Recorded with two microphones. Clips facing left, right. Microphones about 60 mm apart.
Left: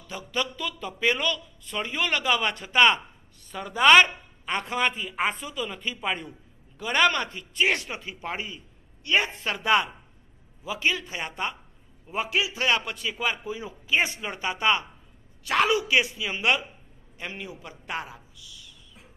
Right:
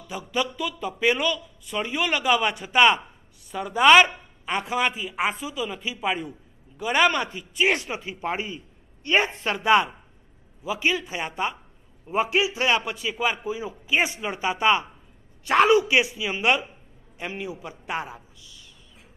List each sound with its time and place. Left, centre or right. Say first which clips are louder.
0.0 s a man's voice: right 3 dB; centre; by 18.7 s right